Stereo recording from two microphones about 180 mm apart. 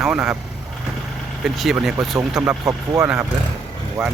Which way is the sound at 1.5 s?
Centre (ahead or behind).